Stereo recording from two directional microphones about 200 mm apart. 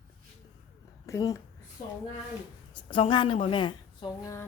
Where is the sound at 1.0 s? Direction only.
15° left (ahead or behind).